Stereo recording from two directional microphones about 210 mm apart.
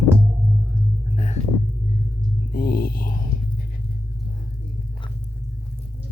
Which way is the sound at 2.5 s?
45° left (ahead or behind).